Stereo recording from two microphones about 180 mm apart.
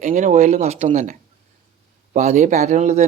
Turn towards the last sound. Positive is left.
turn(degrees=-40)  # may be behind; listen again after turning